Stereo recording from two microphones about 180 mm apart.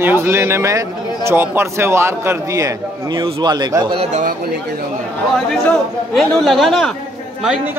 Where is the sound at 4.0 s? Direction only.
40° right (ahead or behind).